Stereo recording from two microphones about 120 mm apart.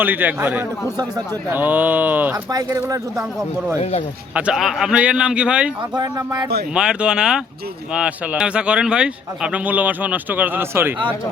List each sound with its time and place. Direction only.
0.0 s speech: 15° right (ahead or behind)
2.3 s speech: 30° right (ahead or behind)
4.4 s speech: 5° right (ahead or behind)
6.0 s speech: 35° right (ahead or behind)
6.7 s speech: 5° right (ahead or behind)